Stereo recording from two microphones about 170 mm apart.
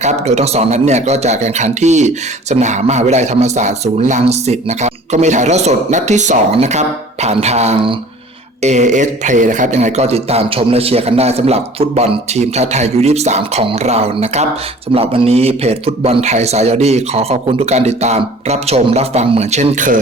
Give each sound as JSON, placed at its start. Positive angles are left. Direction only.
{"t": 0.0, "sound": "speech", "side_deg": -40}